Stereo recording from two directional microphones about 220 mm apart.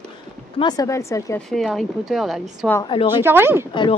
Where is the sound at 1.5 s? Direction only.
Centre (ahead or behind).